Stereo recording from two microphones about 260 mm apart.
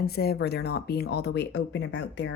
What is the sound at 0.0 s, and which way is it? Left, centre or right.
Speech, left.